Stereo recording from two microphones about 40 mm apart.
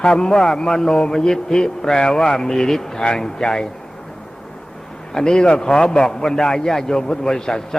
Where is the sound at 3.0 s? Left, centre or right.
Left.